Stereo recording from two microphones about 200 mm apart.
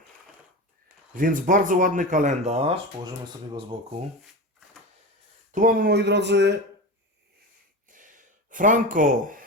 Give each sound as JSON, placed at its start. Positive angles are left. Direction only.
{"t": 1.1, "sound": "speech", "side_deg": -45}
{"t": 5.5, "sound": "speech", "side_deg": -40}
{"t": 7.9, "sound": "a sound", "side_deg": -40}